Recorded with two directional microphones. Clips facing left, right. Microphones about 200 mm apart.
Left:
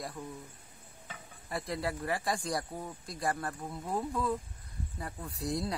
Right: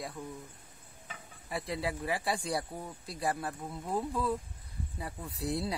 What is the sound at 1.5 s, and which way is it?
A man's voice, centre (ahead or behind).